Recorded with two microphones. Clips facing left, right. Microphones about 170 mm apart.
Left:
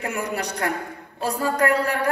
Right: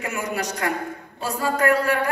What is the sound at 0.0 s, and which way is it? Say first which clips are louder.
A woman's voice: even; 35° left (ahead or behind).